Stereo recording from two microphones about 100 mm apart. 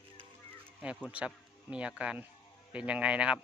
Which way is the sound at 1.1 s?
10° right (ahead or behind).